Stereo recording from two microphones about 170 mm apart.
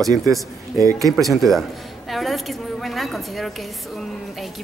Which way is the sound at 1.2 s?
Centre (ahead or behind).